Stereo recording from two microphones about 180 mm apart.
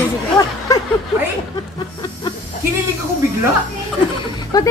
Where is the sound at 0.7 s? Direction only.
20° left (ahead or behind).